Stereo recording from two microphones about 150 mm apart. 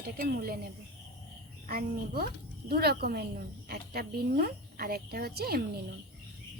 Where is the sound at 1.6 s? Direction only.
70° right (ahead or behind).